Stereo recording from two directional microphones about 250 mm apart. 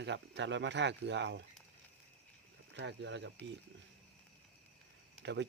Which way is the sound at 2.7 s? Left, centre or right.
Right.